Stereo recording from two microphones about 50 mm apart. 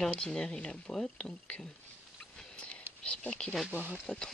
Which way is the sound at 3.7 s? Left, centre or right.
Right.